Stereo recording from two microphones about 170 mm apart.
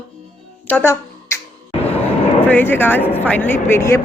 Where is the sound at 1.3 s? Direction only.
15° left (ahead or behind).